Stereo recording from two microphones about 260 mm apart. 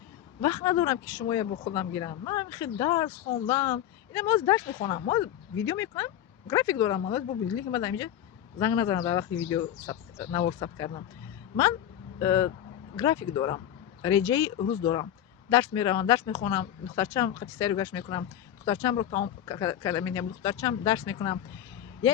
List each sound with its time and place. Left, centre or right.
0.4 s speech: centre
12.2 s speech: centre